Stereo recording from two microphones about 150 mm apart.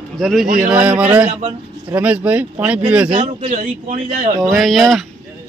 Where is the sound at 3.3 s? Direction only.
50° right (ahead or behind).